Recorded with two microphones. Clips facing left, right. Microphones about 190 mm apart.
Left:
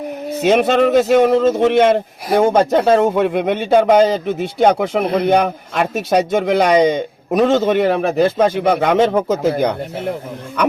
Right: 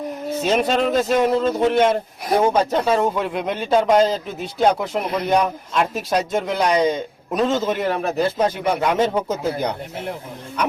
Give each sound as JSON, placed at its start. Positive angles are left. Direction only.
{"t": 0.4, "sound": "a man's voice", "side_deg": 70}
{"t": 2.4, "sound": "speech", "side_deg": 50}
{"t": 2.6, "sound": "a man's voice", "side_deg": 65}
{"t": 8.2, "sound": "a man's voice", "side_deg": 65}